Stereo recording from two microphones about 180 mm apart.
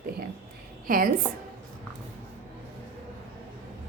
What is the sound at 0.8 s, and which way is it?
Speech, 50° right (ahead or behind).